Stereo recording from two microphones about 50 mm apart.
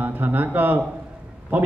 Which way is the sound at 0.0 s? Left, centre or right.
Right.